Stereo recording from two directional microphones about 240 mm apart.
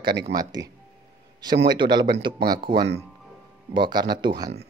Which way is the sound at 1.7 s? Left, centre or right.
Centre.